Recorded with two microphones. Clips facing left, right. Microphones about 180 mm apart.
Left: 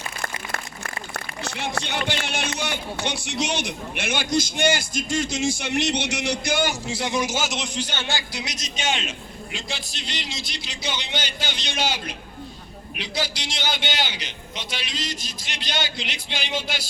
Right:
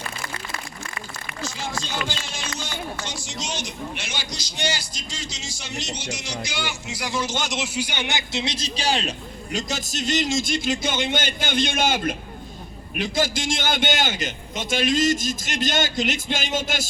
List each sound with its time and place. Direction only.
1.1 s a sound: 65° left (ahead or behind)
2.6 s speech: 65° left (ahead or behind); by 6.7 s 50° left (ahead or behind)
6.8 s speech: 25° left (ahead or behind); by 16.8 s 45° right (ahead or behind)